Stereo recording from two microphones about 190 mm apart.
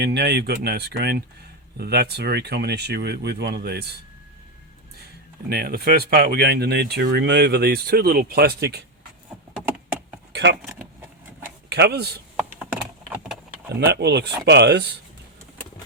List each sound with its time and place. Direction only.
0.0 s speech: 60° right (ahead or behind)
5.5 s speech: 55° right (ahead or behind)
10.3 s a sound: 60° right (ahead or behind)
10.7 s vehicle: 15° right (ahead or behind)
11.7 s speech: 60° right (ahead or behind)
12.4 s computer keyboard: 10° right (ahead or behind)
13.7 s speech: 60° right (ahead or behind)